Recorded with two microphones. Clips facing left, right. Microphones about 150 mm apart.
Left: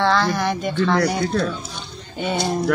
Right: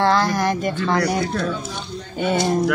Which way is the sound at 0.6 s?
5° right (ahead or behind).